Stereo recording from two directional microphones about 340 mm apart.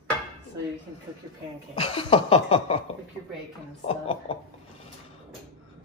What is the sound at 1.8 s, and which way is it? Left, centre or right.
Chuckle, centre.